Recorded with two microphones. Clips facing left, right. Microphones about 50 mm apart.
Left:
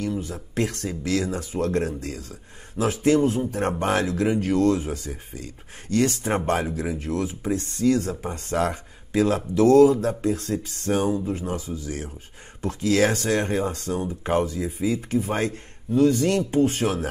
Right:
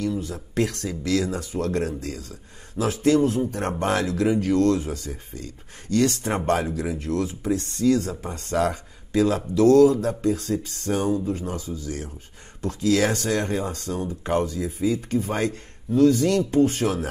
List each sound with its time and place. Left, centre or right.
0.3 s speech: centre; by 11.9 s left
12.6 s speech: centre